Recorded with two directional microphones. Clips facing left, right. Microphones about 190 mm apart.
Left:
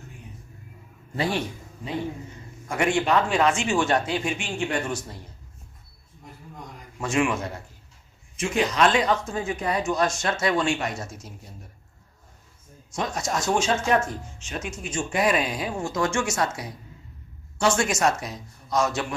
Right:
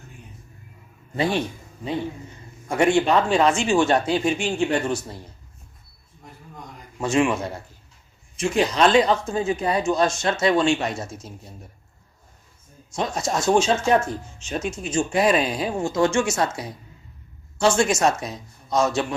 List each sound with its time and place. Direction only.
1.1 s speech: 20° right (ahead or behind)
2.6 s speech: 30° right (ahead or behind)
7.0 s speech: 30° right (ahead or behind)
8.4 s speech: 30° right (ahead or behind)
13.0 s speech: 30° right (ahead or behind)